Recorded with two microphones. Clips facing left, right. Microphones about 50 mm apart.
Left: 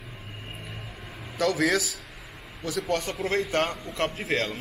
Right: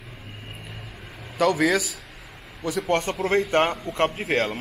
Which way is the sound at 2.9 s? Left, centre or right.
Right.